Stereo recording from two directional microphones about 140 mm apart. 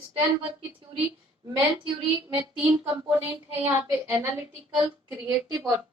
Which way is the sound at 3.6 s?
10° right (ahead or behind).